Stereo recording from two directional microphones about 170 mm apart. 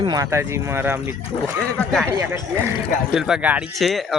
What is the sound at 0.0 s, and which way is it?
Speech, 20° right (ahead or behind).